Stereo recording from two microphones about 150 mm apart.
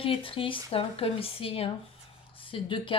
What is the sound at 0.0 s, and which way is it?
Speech, 35° left (ahead or behind).